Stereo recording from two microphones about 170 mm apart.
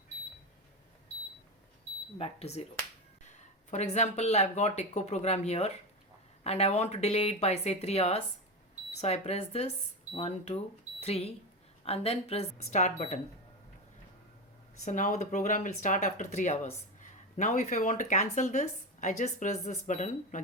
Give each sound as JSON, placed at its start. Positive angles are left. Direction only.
{"t": 2.1, "sound": "speech", "side_deg": 35}
{"t": 3.7, "sound": "speech", "side_deg": 40}
{"t": 14.8, "sound": "speech", "side_deg": 45}